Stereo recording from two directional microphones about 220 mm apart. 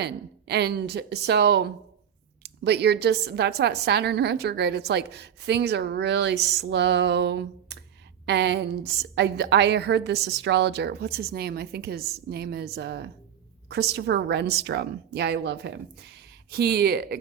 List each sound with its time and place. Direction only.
0.0 s a woman's voice: 50° right (ahead or behind)